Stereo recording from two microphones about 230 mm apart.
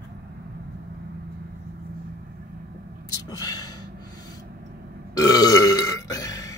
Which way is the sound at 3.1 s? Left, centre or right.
Centre.